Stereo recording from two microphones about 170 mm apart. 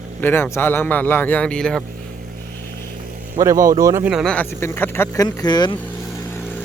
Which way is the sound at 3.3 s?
20° right (ahead or behind).